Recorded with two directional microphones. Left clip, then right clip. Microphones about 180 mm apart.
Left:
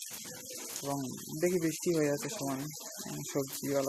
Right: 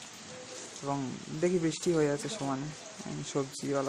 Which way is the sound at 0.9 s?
25° right (ahead or behind).